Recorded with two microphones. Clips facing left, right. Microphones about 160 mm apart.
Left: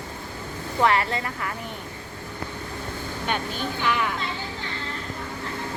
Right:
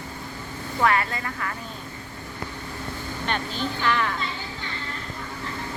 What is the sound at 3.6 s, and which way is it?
Speech, 10° left (ahead or behind).